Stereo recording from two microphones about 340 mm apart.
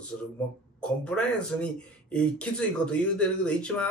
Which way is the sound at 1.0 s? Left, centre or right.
Centre.